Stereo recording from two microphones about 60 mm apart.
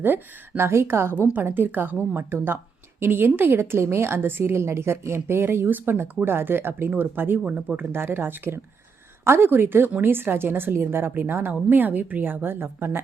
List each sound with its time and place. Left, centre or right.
0.0 s speech: right
1.1 s a woman's voice: right
7.4 s speech: right
7.9 s a woman's voice: right